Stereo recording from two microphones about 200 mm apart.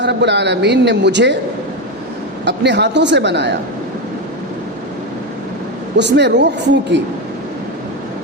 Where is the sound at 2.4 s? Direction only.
60° right (ahead or behind).